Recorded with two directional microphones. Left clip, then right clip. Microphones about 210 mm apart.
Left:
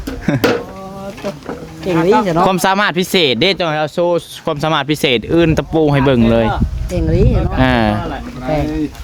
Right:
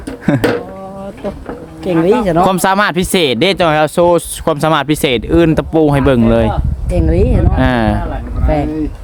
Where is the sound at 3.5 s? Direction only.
20° right (ahead or behind).